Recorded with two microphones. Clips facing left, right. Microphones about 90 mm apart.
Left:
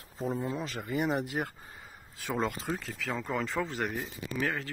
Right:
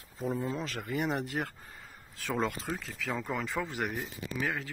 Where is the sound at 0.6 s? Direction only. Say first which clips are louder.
Left 1 dB; 5° left (ahead or behind).